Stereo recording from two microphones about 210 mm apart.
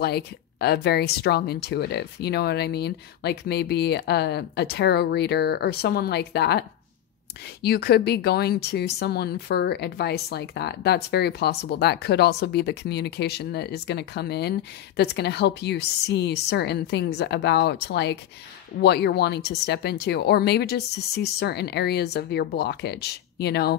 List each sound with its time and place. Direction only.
0.0 s speech: 50° left (ahead or behind)
7.6 s speech: 50° left (ahead or behind)